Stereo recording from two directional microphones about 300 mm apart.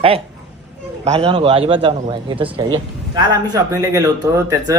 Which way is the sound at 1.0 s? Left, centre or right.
Right.